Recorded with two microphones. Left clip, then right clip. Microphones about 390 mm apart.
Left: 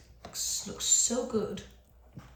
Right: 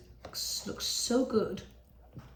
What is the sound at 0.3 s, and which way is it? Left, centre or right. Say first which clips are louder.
Speech: left 1 dB; centre.